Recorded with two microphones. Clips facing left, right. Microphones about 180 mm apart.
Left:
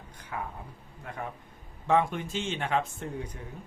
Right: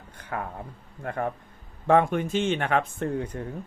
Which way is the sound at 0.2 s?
60° right (ahead or behind).